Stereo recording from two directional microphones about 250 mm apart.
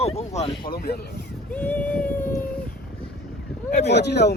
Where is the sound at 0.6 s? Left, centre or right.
Left.